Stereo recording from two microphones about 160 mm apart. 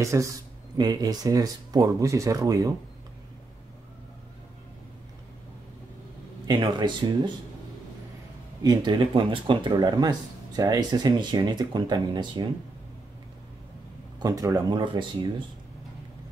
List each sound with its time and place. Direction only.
0.0 s speech: 20° right (ahead or behind)
6.4 s speech: 30° right (ahead or behind)
8.6 s speech: 30° right (ahead or behind)
14.2 s speech: 20° right (ahead or behind)